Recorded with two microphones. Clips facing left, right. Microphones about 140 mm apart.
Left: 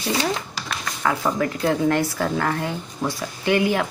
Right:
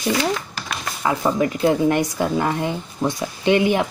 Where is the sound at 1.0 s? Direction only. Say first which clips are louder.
Right 3 dB; 20° right (ahead or behind).